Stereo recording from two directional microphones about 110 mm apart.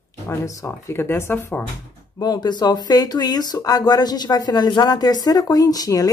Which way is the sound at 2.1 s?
35° left (ahead or behind).